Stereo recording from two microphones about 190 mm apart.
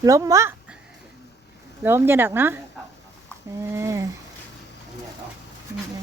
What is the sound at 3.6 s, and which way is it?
Speech, 15° right (ahead or behind).